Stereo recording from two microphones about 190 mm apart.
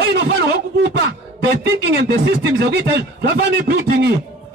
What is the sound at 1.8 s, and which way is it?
Speech, 60° right (ahead or behind).